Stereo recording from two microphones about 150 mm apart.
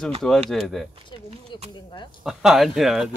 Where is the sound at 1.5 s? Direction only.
30° left (ahead or behind).